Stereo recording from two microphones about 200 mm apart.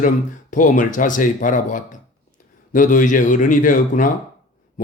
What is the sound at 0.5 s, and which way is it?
A man's voice, 40° left (ahead or behind).